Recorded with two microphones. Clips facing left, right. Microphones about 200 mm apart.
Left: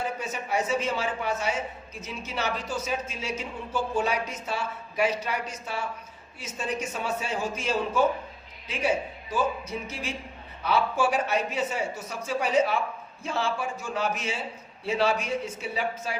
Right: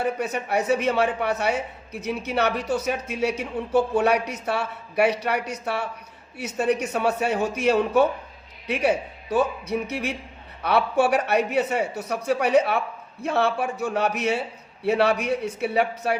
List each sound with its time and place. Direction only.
0.0 s speech: 65° right (ahead or behind)